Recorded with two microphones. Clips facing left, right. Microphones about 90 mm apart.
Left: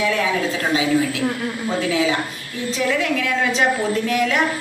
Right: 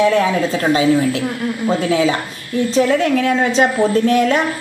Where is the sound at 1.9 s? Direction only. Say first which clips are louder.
Right 4 dB; 40° right (ahead or behind).